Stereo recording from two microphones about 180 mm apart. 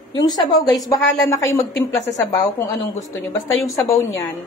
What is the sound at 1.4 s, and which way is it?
Speech, 15° left (ahead or behind).